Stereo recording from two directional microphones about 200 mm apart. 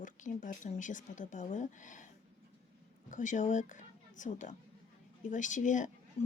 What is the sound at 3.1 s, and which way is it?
Speech, 40° left (ahead or behind).